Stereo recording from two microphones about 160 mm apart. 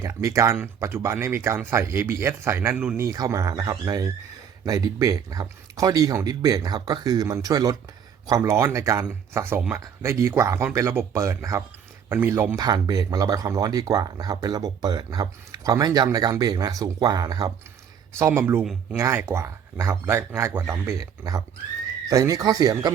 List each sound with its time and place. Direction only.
0.0 s speech: 20° right (ahead or behind)
3.1 s speech: 20° right (ahead or behind)
18.6 s speech: centre (ahead or behind)
18.9 s speech: 15° right (ahead or behind)
22.1 s speech: 20° right (ahead or behind)